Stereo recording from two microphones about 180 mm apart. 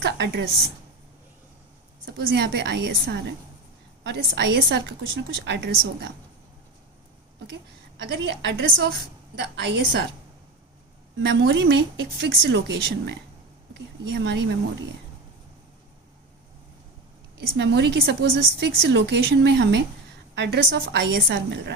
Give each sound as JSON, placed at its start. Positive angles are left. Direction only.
{"t": 0.0, "sound": "a woman's voice", "side_deg": -75}
{"t": 2.1, "sound": "a woman's voice", "side_deg": -75}
{"t": 7.9, "sound": "a woman's voice", "side_deg": -70}
{"t": 11.2, "sound": "a woman's voice", "side_deg": -90}
{"t": 17.6, "sound": "a woman's voice", "side_deg": -70}
{"t": 18.7, "sound": "a woman's voice", "side_deg": -70}